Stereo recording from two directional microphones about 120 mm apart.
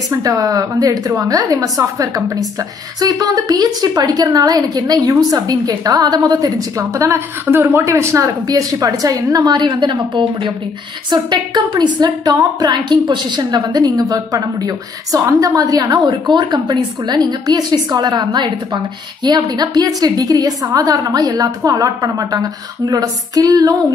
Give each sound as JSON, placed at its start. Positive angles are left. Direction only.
{"t": 0.1, "sound": "a woman's voice", "side_deg": -30}